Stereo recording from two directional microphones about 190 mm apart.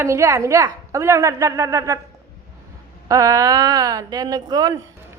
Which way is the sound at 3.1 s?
15° right (ahead or behind).